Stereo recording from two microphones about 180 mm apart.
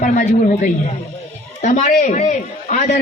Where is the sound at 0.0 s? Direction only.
45° left (ahead or behind).